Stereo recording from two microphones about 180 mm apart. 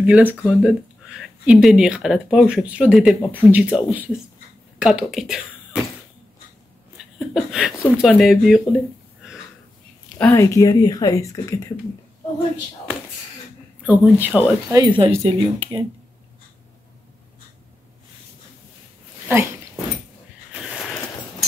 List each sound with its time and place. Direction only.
0.0 s speech: 10° right (ahead or behind)
7.2 s speech: centre (ahead or behind)
9.2 s a sound: 5° right (ahead or behind)
10.1 s speech: 10° left (ahead or behind)
13.8 s speech: 10° right (ahead or behind)
14.8 s speech: 30° right (ahead or behind)